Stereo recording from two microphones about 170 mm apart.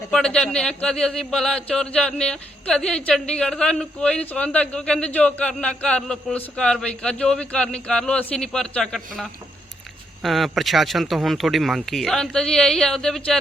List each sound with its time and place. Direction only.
0.1 s speech: 5° left (ahead or behind)